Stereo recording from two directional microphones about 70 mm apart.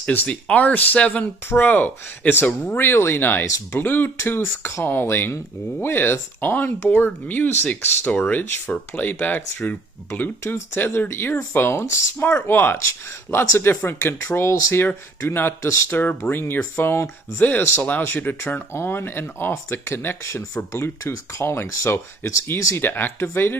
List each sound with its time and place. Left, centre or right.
0.0 s speech: left
16.0 s speech: left
20.7 s speech: left
22.2 s speech: left